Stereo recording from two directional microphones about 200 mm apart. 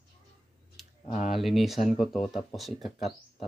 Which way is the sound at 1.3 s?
Centre (ahead or behind).